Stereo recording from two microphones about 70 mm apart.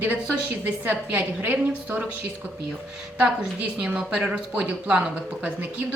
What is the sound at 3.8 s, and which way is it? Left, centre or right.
Speech, centre.